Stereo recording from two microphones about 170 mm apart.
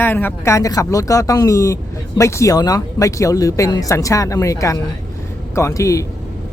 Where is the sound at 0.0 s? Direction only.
10° left (ahead or behind).